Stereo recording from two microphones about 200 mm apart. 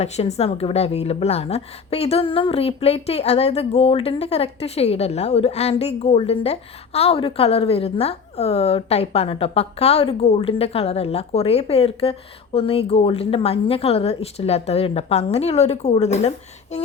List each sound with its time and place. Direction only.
0.0 s a woman's voice: 30° left (ahead or behind)